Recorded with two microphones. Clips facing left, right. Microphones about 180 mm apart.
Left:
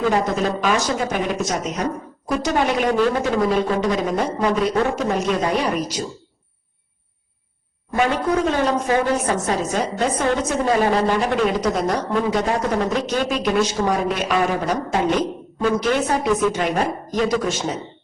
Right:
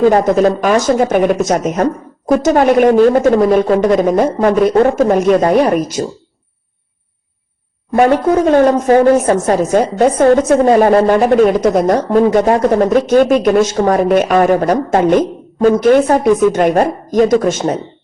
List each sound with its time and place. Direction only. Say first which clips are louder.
0.0 s a woman's voice: right 10 dB; 50° right (ahead or behind)
7.9 s a woman's voice: right 9 dB; 50° right (ahead or behind)